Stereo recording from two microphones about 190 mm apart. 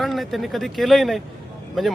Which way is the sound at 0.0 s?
Centre (ahead or behind).